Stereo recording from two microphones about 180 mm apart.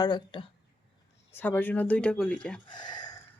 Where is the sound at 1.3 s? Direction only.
10° left (ahead or behind).